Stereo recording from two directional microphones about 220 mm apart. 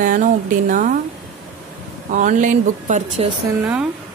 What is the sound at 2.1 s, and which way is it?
A woman's voice, 35° right (ahead or behind).